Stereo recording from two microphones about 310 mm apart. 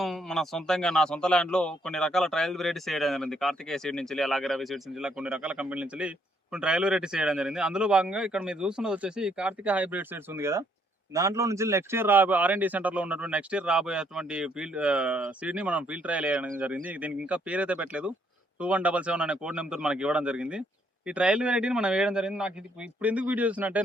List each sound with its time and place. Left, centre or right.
0.0 s a man's voice: centre